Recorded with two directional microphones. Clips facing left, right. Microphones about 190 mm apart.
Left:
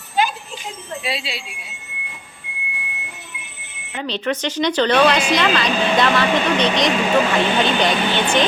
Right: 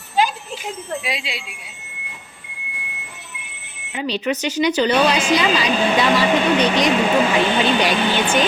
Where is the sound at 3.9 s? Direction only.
10° right (ahead or behind).